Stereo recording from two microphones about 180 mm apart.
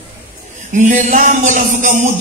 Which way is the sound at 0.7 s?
45° right (ahead or behind).